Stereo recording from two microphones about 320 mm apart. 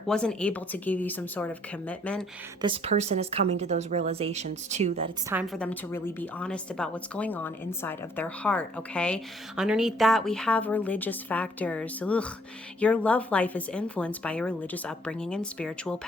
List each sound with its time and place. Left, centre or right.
0.1 s a woman's voice: centre
2.6 s speech: centre
5.3 s a woman's voice: centre